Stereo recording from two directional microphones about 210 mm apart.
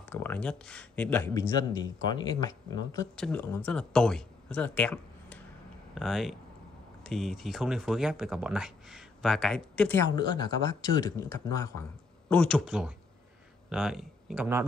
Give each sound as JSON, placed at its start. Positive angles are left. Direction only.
{"t": 0.0, "sound": "speech", "side_deg": 10}
{"t": 3.2, "sound": "speech", "side_deg": 10}
{"t": 10.1, "sound": "speech", "side_deg": 20}
{"t": 12.3, "sound": "speech", "side_deg": 5}